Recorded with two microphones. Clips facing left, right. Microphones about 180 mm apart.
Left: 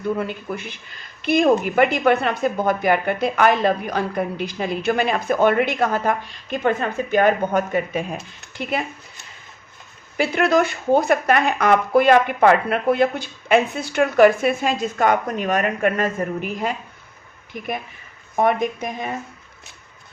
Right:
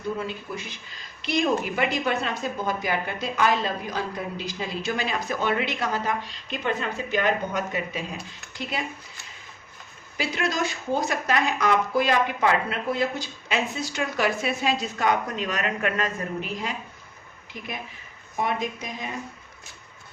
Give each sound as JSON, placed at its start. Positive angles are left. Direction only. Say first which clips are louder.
{"t": 0.2, "sound": "speech", "louder": "left 5 dB", "side_deg": 60}
{"t": 10.2, "sound": "speech", "louder": "left 9 dB", "side_deg": 55}
{"t": 18.3, "sound": "speech", "louder": "left 8 dB", "side_deg": 55}